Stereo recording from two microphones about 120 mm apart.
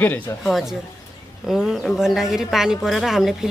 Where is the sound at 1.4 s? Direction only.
Centre (ahead or behind).